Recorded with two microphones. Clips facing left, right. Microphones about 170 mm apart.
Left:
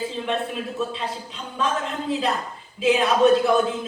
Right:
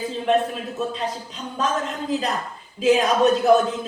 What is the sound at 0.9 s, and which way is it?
Speech, 40° right (ahead or behind).